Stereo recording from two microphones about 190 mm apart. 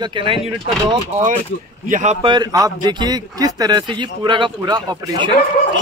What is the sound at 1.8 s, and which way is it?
Speech, 45° right (ahead or behind).